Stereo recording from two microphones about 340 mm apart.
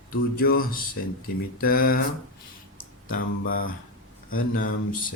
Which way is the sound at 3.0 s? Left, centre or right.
Left.